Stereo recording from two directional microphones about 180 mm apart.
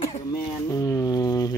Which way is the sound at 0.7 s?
20° left (ahead or behind).